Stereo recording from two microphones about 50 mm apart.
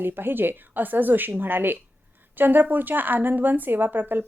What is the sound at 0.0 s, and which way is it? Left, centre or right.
Speech, right.